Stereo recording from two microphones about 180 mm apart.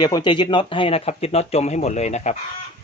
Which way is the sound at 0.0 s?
25° left (ahead or behind).